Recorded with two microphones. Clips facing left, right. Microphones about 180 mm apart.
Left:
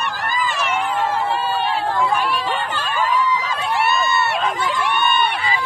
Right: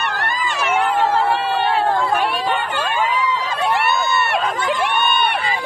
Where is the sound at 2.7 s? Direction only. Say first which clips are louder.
Even; 65° right (ahead or behind).